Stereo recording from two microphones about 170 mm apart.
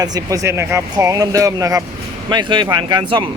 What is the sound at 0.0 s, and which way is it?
Speech, 20° right (ahead or behind).